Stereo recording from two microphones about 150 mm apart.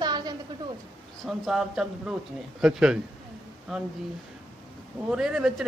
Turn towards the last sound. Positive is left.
turn(degrees=-5)  # may be behind; listen again after turning